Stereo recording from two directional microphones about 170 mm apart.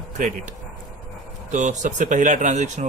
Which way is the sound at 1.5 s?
45° right (ahead or behind).